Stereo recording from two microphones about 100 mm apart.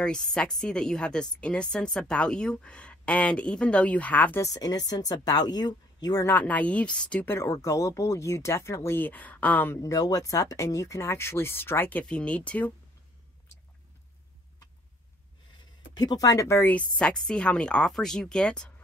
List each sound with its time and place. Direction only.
0.0 s a woman's voice: 10° left (ahead or behind)
4.4 s speech: 40° left (ahead or behind)
6.2 s a woman's voice: 15° left (ahead or behind)
7.2 s speech: 25° left (ahead or behind)
9.8 s speech: 35° left (ahead or behind)
12.0 s a woman's voice: 10° left (ahead or behind)
15.9 s speech: 40° left (ahead or behind); by 16.7 s 25° left (ahead or behind)
16.7 s a woman's voice: 10° left (ahead or behind)